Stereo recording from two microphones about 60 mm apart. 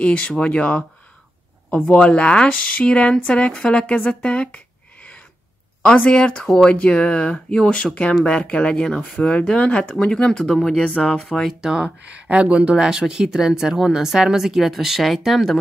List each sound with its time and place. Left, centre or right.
0.0 s speech: centre
2.0 s speech: centre
5.9 s speech: left
11.6 s speech: centre